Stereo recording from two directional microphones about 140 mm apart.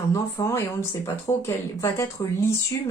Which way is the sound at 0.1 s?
20° left (ahead or behind).